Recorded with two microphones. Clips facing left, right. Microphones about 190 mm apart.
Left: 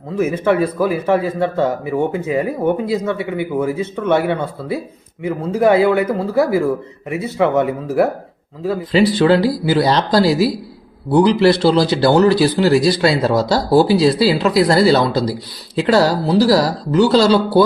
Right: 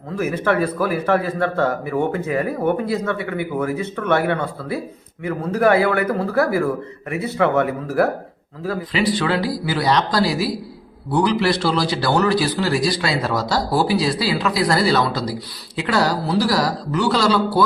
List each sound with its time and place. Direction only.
0.4 s a man's voice: 15° left (ahead or behind)
8.9 s speech: 35° left (ahead or behind)